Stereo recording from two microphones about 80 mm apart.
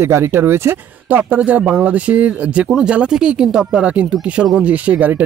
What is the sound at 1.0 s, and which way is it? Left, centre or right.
Speech, right.